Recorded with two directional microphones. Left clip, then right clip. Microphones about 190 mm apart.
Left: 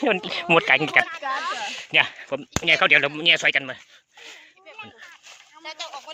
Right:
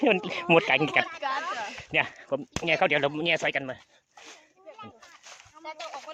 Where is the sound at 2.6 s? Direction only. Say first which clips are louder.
Left 7 dB; 10° right (ahead or behind).